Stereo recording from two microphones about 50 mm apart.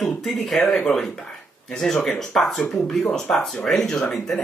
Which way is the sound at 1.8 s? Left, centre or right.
Centre.